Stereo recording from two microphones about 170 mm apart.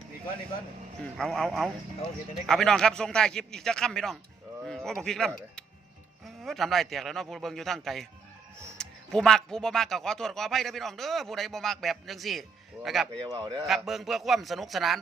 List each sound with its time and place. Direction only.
1.2 s a man's voice: centre (ahead or behind)
13.1 s a man's voice: 25° right (ahead or behind)
13.7 s a man's voice: centre (ahead or behind)